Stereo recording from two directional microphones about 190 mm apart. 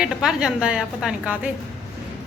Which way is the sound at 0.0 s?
5° right (ahead or behind).